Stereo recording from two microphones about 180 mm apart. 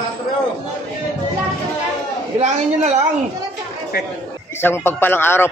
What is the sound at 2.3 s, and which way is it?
Speech, 40° right (ahead or behind).